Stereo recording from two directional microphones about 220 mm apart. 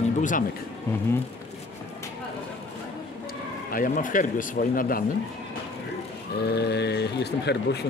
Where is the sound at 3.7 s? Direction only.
40° left (ahead or behind).